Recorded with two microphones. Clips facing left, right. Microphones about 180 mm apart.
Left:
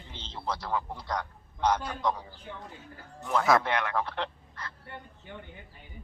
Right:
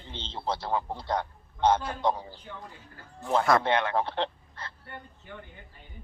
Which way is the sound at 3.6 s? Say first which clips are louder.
Right 4 dB; 30° right (ahead or behind).